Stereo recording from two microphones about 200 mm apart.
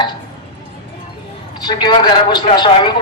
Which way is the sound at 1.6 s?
20° left (ahead or behind).